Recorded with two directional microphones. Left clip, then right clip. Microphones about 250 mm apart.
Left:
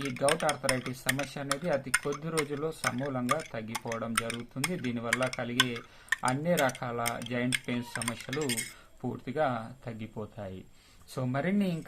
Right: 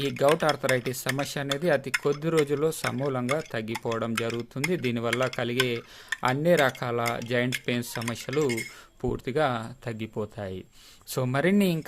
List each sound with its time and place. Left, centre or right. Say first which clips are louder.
0.2 s speech: right 5 dB; right